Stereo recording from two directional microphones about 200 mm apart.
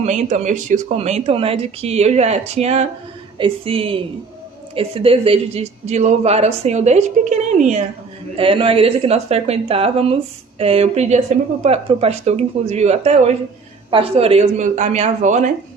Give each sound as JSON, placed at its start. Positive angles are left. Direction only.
{"t": 0.0, "sound": "a woman's voice", "side_deg": -35}